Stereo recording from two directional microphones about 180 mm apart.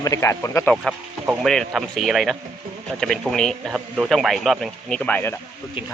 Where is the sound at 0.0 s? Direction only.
15° left (ahead or behind).